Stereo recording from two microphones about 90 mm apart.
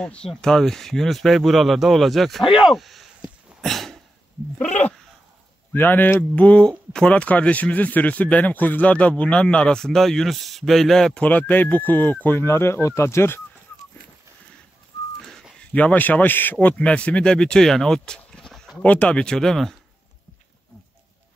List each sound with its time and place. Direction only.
0.0 s speech: 10° left (ahead or behind)
3.6 s a sound: 5° left (ahead or behind)
5.7 s speech: 20° left (ahead or behind); by 11.2 s 5° left (ahead or behind)
11.2 s speech: 20° left (ahead or behind)
15.7 s speech: 15° left (ahead or behind)